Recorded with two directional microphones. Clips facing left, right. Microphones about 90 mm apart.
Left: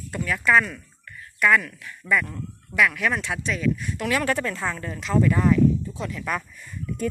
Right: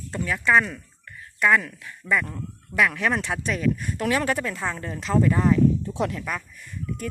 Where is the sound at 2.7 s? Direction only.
25° right (ahead or behind).